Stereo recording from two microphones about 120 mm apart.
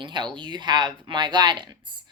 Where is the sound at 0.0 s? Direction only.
40° right (ahead or behind).